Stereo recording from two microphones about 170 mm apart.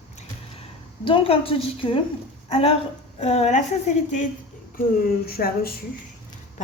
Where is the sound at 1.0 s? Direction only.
30° left (ahead or behind).